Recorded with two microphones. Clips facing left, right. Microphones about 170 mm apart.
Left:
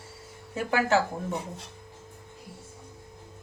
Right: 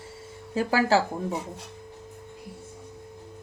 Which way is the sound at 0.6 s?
35° right (ahead or behind).